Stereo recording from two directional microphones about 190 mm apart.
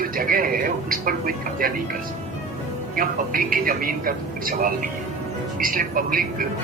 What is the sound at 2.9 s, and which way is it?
A man's voice, 45° right (ahead or behind).